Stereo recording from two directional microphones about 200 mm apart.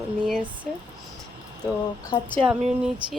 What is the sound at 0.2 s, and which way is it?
Speech, 5° right (ahead or behind).